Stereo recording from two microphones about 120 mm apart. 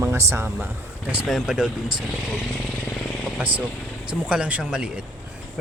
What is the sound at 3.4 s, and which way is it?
Speech, 10° right (ahead or behind).